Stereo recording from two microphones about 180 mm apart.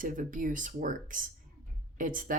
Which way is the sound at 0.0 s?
45° right (ahead or behind).